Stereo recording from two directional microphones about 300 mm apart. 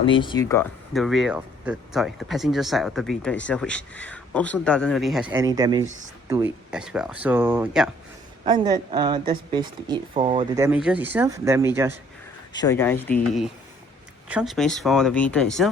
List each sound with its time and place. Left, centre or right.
0.0 s speech: centre
8.4 s speech: centre
12.5 s speech: centre